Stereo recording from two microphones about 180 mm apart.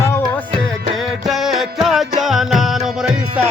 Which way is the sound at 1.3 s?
Centre (ahead or behind).